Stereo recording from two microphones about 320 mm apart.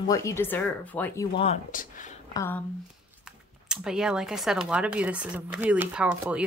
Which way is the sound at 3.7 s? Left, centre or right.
Centre.